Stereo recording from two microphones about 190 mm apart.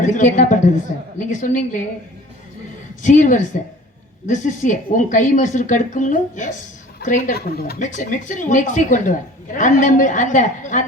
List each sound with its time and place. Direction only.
0.0 s speech: 40° left (ahead or behind)
3.0 s speech: 40° left (ahead or behind)
7.8 s speech: 40° left (ahead or behind)